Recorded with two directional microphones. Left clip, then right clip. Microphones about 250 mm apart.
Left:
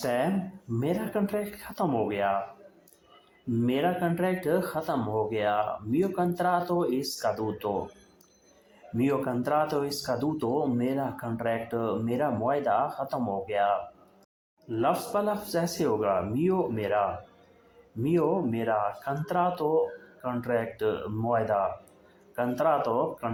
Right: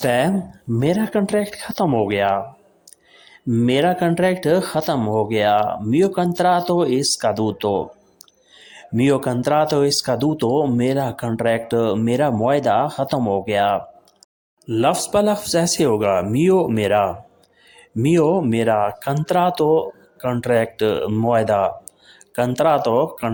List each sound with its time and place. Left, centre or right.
0.0 s speech: right
3.6 s speech: right
9.0 s speech: right